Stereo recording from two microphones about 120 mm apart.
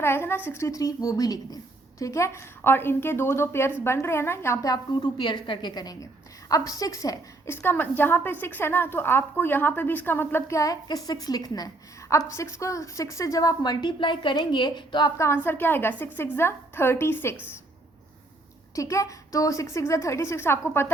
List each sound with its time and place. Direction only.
0.0 s a woman's voice: 20° left (ahead or behind); by 15.1 s 40° left (ahead or behind)
15.4 s a woman's voice: 20° left (ahead or behind)
18.8 s a woman's voice: 25° left (ahead or behind)